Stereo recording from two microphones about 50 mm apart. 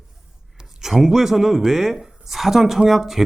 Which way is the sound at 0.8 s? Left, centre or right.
Centre.